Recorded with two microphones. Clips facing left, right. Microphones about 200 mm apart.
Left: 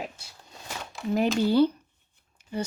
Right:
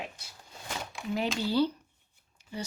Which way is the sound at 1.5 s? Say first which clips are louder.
Left 5 dB; 55° left (ahead or behind).